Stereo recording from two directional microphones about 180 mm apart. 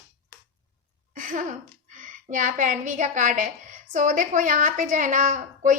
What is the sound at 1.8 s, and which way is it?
A woman's voice, 45° right (ahead or behind).